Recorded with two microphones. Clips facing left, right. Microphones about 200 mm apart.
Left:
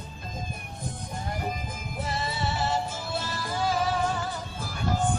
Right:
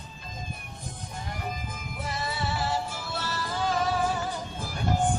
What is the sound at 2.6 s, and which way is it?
Music, 15° left (ahead or behind).